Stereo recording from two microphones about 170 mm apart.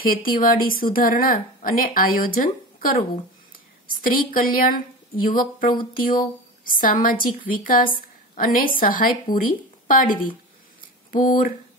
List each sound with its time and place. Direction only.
0.0 s a woman's voice: 55° left (ahead or behind)